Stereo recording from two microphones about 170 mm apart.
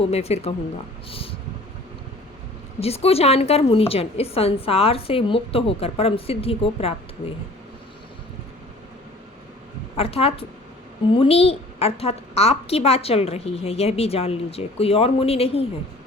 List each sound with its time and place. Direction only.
0.0 s a woman's voice: 35° left (ahead or behind)
1.1 s vehicle: 35° left (ahead or behind)
2.8 s a woman's voice: 35° left (ahead or behind)
10.0 s a woman's voice: 35° left (ahead or behind)